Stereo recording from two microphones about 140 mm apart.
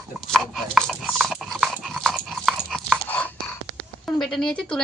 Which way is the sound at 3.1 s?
15° left (ahead or behind).